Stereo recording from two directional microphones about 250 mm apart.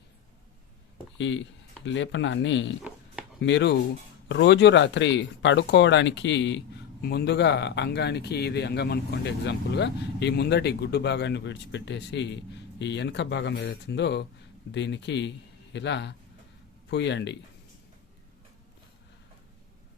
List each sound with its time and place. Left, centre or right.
1.2 s speech: left